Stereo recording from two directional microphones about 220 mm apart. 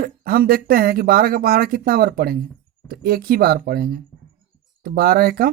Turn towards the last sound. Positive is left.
turn(degrees=-45)  # may be behind; listen again after turning